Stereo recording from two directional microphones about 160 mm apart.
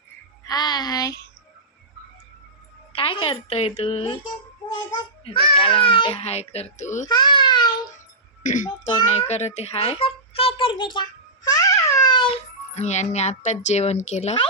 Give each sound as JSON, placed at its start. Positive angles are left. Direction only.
{"t": 0.4, "sound": "speech", "side_deg": 25}
{"t": 2.9, "sound": "a woman's voice", "side_deg": 35}
{"t": 7.1, "sound": "baby cry", "side_deg": 30}
{"t": 8.4, "sound": "a child's voice", "side_deg": 55}
{"t": 9.3, "sound": "a child's voice", "side_deg": 45}